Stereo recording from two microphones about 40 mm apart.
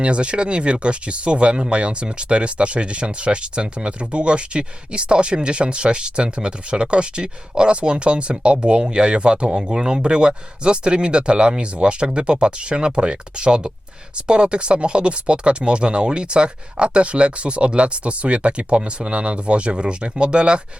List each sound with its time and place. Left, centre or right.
0.0 s speech: right